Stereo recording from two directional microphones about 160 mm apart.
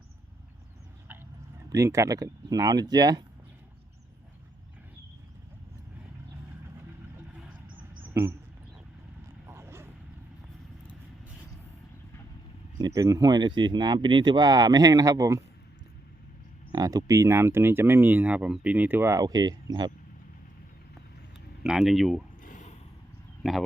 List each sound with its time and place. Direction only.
1.7 s speech: 20° right (ahead or behind)
8.1 s speech: 25° right (ahead or behind)
9.5 s vehicle: 15° right (ahead or behind)
12.8 s speech: 20° right (ahead or behind)
16.7 s speech: 20° right (ahead or behind)
21.6 s speech: centre (ahead or behind)
22.4 s a sound: 50° left (ahead or behind)
23.4 s speech: centre (ahead or behind)